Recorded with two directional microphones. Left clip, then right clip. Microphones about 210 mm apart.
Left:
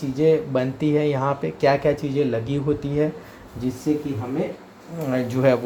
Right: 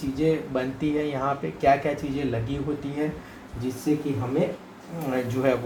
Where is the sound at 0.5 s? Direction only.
50° left (ahead or behind).